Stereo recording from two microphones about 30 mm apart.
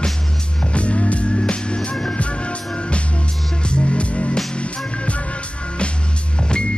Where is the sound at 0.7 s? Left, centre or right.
Left.